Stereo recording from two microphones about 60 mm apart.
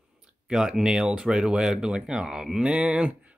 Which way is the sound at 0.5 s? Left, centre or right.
Centre.